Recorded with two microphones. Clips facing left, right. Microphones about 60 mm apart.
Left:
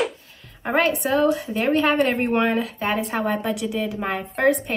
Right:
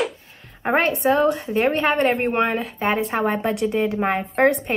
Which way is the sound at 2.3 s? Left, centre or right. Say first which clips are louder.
Even; centre.